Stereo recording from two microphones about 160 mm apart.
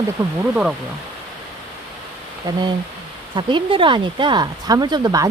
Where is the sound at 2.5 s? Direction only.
25° right (ahead or behind).